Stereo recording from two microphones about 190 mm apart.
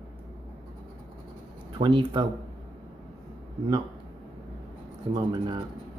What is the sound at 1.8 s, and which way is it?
Speech, 25° right (ahead or behind).